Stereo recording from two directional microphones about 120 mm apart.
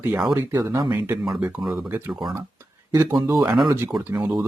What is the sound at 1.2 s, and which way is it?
Speech, 5° right (ahead or behind).